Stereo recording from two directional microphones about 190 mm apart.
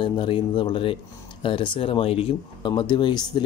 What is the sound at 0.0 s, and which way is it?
Speech, 25° left (ahead or behind).